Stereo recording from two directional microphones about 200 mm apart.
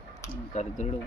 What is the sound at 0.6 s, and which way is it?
Speech, 35° left (ahead or behind).